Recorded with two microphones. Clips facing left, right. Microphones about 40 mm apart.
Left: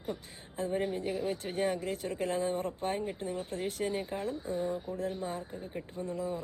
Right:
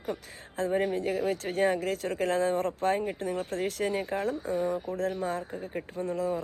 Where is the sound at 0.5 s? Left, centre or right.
Right.